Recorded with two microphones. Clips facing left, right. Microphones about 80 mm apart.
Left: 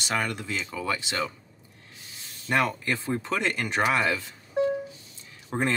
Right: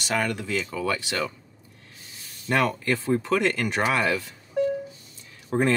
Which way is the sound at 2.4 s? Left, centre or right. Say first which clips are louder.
Right 2 dB; centre.